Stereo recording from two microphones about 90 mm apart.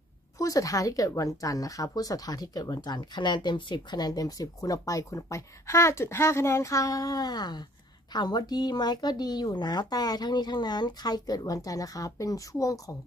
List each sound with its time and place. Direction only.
0.4 s speech: 40° left (ahead or behind)